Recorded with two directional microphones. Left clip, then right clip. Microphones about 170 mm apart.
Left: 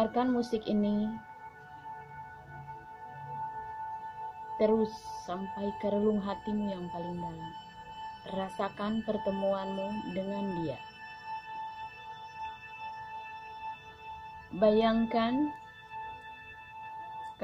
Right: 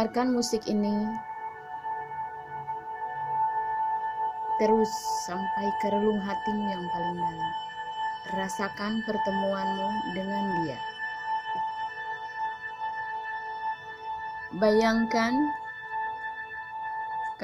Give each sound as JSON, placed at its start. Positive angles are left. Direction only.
{"t": 0.0, "sound": "speech", "side_deg": -15}
{"t": 3.2, "sound": "music", "side_deg": -30}
{"t": 4.6, "sound": "speech", "side_deg": -15}
{"t": 5.4, "sound": "music", "side_deg": -35}
{"t": 5.9, "sound": "speech", "side_deg": -30}
{"t": 6.4, "sound": "music", "side_deg": -35}
{"t": 8.3, "sound": "speech", "side_deg": -10}
{"t": 9.2, "sound": "music", "side_deg": -30}
{"t": 14.6, "sound": "speech", "side_deg": -20}